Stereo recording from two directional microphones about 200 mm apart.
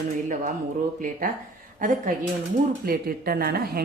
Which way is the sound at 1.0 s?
45° right (ahead or behind).